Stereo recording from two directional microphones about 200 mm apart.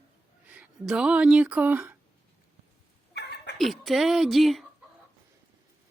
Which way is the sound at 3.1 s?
55° left (ahead or behind).